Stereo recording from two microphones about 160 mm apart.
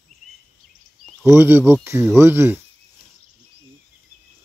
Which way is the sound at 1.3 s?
15° right (ahead or behind).